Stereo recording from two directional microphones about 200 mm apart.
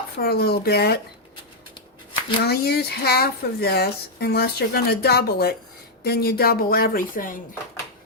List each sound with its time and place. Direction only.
0.2 s speech: 50° left (ahead or behind)
2.4 s speech: 50° left (ahead or behind)